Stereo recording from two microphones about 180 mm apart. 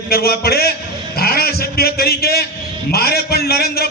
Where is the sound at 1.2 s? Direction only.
60° left (ahead or behind).